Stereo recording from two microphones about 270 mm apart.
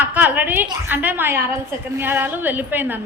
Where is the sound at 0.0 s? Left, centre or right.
Centre.